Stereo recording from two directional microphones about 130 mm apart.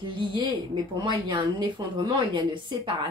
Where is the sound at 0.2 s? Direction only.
35° right (ahead or behind).